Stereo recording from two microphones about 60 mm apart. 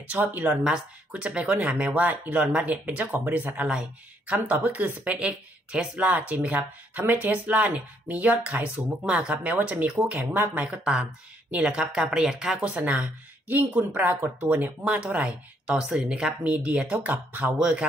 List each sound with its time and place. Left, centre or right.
0.1 s speech: right
0.7 s speech: centre
12.7 s speech: right
17.6 s speech: centre